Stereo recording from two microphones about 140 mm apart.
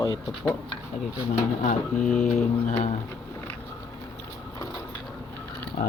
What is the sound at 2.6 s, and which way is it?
Speech, 55° left (ahead or behind).